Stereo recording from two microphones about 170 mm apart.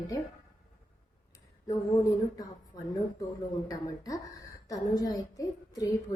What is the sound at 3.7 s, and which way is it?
A woman's voice, 20° left (ahead or behind).